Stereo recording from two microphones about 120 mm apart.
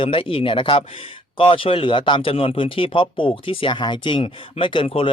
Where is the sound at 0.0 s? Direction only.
45° left (ahead or behind).